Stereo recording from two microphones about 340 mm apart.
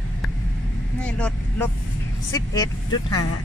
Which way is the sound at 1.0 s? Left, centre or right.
Centre.